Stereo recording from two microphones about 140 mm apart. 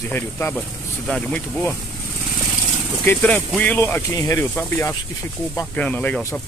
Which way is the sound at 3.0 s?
10° left (ahead or behind).